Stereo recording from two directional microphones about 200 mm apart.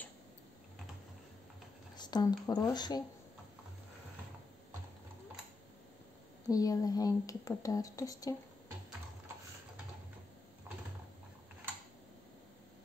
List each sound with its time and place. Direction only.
2.0 s speech: 20° left (ahead or behind)
6.5 s speech: 20° left (ahead or behind)